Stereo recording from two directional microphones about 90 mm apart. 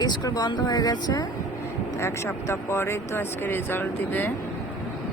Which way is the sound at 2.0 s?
30° left (ahead or behind).